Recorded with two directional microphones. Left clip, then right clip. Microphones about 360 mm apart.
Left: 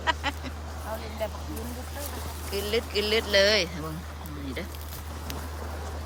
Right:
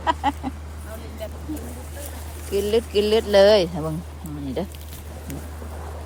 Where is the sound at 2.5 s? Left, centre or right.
Centre.